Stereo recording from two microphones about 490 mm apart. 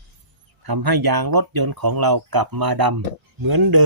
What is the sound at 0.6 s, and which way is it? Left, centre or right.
Speech, right.